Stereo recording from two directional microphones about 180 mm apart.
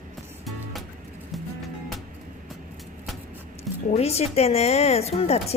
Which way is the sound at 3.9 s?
35° left (ahead or behind).